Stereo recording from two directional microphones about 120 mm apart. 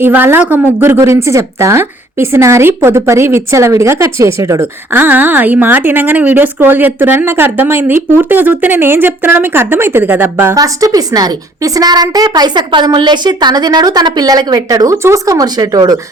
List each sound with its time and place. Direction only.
0.0 s a woman's voice: 15° right (ahead or behind)
10.6 s a woman's voice: 30° right (ahead or behind)